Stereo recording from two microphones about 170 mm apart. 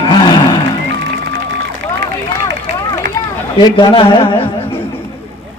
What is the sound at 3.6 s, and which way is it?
Speech, 25° left (ahead or behind).